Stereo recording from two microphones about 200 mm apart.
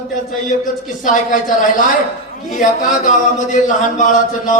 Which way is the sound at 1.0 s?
40° left (ahead or behind).